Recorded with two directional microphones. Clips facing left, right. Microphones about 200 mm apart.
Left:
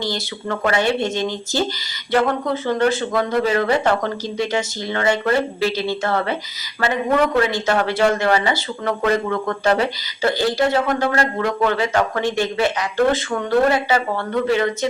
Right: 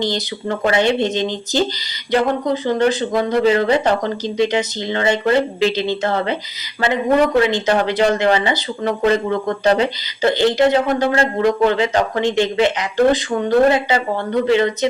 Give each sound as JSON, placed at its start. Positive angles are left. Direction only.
{"t": 0.0, "sound": "speech", "side_deg": -20}